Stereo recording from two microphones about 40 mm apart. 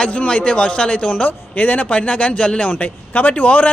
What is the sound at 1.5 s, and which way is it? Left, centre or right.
A man's voice, left.